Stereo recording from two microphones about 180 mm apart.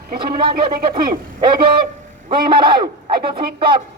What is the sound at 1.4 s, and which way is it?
A man's voice, 25° right (ahead or behind).